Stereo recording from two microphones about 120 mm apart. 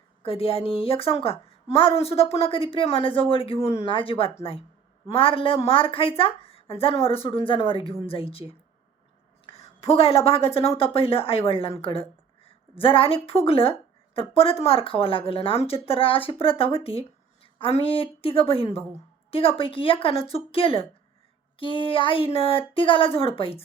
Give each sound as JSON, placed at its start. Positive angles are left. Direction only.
{"t": 0.3, "sound": "a woman's voice", "side_deg": 55}
{"t": 9.5, "sound": "a woman's voice", "side_deg": 55}